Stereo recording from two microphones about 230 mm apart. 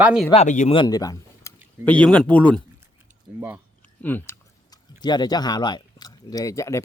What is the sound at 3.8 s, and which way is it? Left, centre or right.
Speech, centre.